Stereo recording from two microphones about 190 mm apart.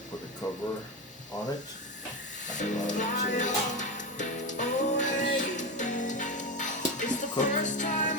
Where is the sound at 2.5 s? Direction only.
40° left (ahead or behind).